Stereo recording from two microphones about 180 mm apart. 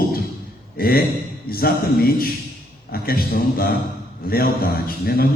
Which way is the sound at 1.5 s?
55° left (ahead or behind).